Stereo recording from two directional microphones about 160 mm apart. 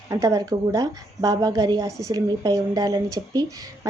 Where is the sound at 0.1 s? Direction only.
20° right (ahead or behind).